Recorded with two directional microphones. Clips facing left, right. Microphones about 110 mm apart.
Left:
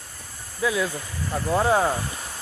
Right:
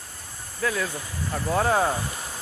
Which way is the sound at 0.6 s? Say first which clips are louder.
Left 3 dB; 10° left (ahead or behind).